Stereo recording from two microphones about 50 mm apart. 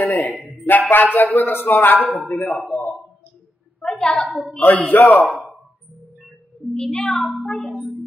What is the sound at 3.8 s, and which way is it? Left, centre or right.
Music, centre.